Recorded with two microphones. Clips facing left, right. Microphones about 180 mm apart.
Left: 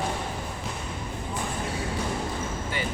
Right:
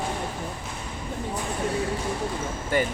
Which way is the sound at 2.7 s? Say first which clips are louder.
Right 10 dB; 45° right (ahead or behind).